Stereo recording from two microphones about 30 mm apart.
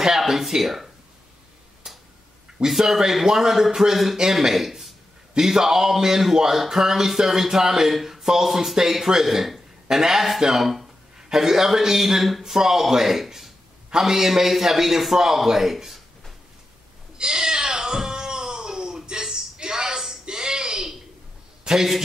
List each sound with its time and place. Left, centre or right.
0.2 s speech: centre
1.8 s tick-tock: centre
2.8 s speech: centre
17.2 s a sound: right